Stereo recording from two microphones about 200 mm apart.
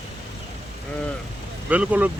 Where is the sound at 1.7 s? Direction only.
10° right (ahead or behind).